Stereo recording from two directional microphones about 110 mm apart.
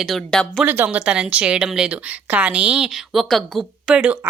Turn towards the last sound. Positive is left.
turn(degrees=-5)  # may be behind; listen again after turning